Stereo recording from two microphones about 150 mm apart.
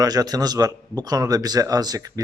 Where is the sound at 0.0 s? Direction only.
25° right (ahead or behind).